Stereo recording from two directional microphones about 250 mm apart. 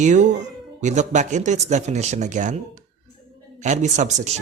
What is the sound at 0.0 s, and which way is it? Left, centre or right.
Speech, right.